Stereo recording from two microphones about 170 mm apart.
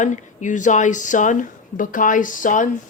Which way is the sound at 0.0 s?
45° left (ahead or behind).